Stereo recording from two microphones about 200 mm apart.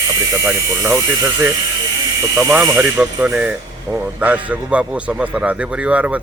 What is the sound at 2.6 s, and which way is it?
Speech, 15° right (ahead or behind).